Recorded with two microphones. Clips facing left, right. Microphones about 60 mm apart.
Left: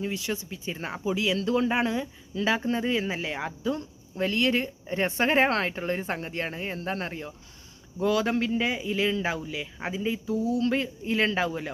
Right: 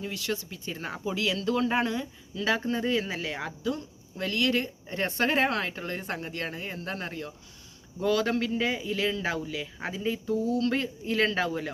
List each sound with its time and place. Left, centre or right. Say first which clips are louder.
0.0 s speech: left 2 dB; left
8.0 s a man's voice: left 1 dB; centre